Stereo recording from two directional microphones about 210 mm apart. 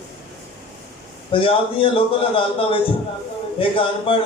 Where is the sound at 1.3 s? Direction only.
25° left (ahead or behind).